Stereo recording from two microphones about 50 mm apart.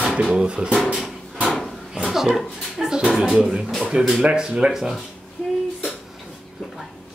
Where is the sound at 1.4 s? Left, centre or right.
Centre.